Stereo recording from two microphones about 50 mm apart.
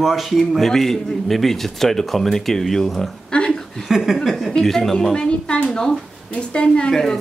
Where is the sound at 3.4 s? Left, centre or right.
Centre.